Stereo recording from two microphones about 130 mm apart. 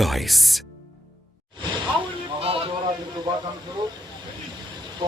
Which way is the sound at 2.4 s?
45° right (ahead or behind).